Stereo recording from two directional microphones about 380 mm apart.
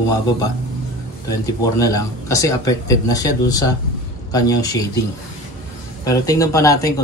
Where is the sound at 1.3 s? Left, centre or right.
Centre.